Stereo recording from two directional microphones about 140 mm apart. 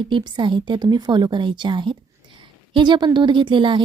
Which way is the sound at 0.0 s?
35° right (ahead or behind).